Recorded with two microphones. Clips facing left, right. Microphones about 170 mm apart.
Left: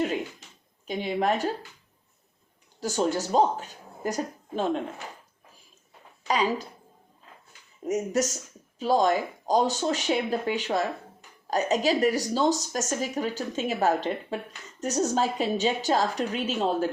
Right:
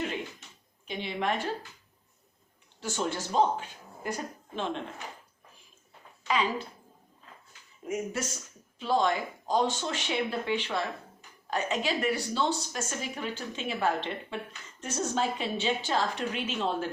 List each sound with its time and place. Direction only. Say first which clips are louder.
0.0 s a sound: left 6 dB; 40° left (ahead or behind)
0.9 s speech: left 5 dB; 40° left (ahead or behind)
2.8 s speech: left 6 dB; 40° left (ahead or behind)
6.2 s speech: left 3 dB; 40° left (ahead or behind)
7.9 s speech: left 7 dB; 40° left (ahead or behind)